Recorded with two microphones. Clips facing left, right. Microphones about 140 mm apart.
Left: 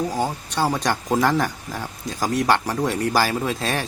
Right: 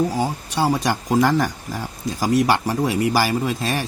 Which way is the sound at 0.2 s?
10° right (ahead or behind).